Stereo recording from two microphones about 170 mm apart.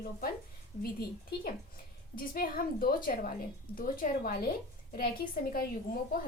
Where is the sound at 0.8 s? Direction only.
65° left (ahead or behind).